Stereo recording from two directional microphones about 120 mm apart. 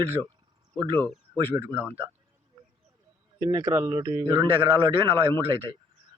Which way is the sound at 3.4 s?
25° right (ahead or behind).